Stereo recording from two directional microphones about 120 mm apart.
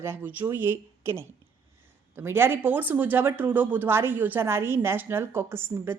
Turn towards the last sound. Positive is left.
turn(degrees=-20)  # may be behind; listen again after turning